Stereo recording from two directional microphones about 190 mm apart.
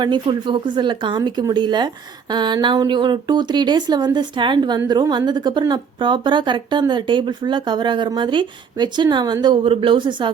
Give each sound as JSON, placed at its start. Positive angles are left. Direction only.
{"t": 0.0, "sound": "a woman's voice", "side_deg": -25}